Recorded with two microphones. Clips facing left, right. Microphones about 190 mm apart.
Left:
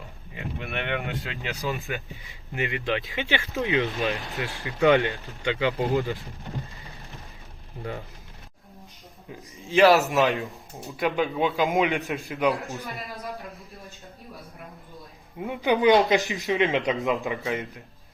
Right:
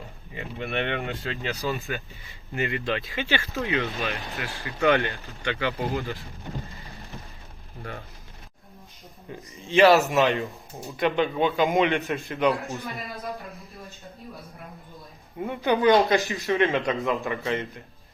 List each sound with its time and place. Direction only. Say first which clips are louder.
0.3 s a man's voice: right 3 dB; 5° left (ahead or behind)
1.1 s speech: right 2 dB; 15° left (ahead or behind)
3.8 s a man's voice: left 3 dB; centre (ahead or behind)
4.6 s speech: left 2 dB; 15° left (ahead or behind)
9.3 s a man's voice: even; centre (ahead or behind)
15.4 s speech: left 1 dB; 15° left (ahead or behind)
17.4 s a man's voice: right 1 dB; centre (ahead or behind)